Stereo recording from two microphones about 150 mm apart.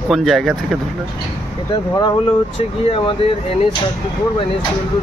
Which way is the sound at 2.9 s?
35° left (ahead or behind).